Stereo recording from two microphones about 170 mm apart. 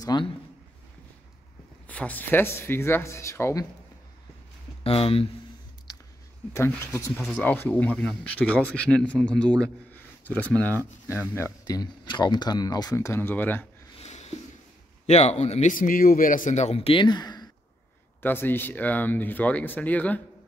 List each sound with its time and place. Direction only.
0.0 s a man's voice: 25° left (ahead or behind)
1.9 s speech: 10° left (ahead or behind)
4.8 s a man's voice: 35° left (ahead or behind)
5.9 s a sound: 20° left (ahead or behind)
6.5 s speech: 15° left (ahead or behind)
13.9 s a sound: 40° left (ahead or behind)
15.0 s a man's voice: 40° left (ahead or behind); by 17.5 s 25° left (ahead or behind)
18.2 s speech: 10° left (ahead or behind)